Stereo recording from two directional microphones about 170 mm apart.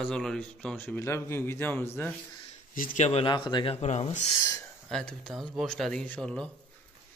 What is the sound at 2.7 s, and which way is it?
Speech, 55° left (ahead or behind).